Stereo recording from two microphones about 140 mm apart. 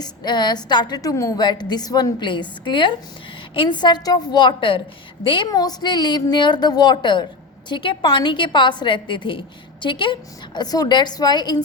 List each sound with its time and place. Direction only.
0.0 s a woman's voice: 30° left (ahead or behind)